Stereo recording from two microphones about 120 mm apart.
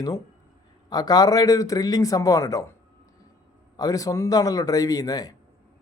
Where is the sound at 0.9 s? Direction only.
30° left (ahead or behind).